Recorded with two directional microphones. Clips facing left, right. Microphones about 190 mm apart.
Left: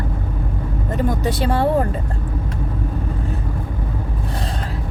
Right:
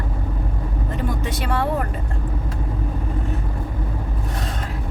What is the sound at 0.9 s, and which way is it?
Vehicle, 35° left (ahead or behind).